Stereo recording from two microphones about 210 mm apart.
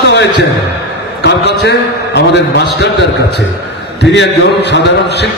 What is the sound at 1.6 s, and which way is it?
A man's voice, 55° left (ahead or behind).